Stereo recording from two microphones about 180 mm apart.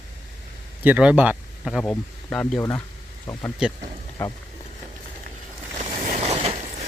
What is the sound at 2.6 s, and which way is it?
Speech, 20° left (ahead or behind).